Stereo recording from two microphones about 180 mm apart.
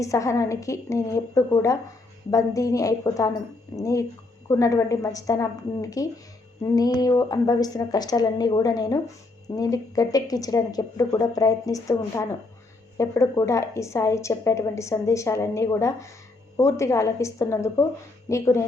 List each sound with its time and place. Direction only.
0.0 s a woman's voice: 15° left (ahead or behind)